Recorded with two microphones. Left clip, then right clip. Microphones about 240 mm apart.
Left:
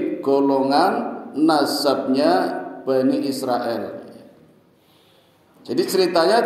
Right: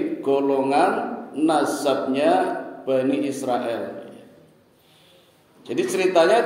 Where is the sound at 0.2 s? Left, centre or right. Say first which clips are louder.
Left 3 dB; left.